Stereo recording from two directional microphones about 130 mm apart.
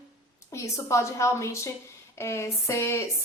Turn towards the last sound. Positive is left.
turn(degrees=20)  # may be behind; listen again after turning